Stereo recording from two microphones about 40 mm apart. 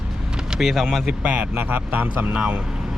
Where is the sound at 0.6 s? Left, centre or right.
Centre.